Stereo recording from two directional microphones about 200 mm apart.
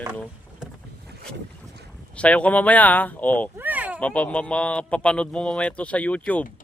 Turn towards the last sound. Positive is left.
turn(degrees=5)  # may be behind; listen again after turning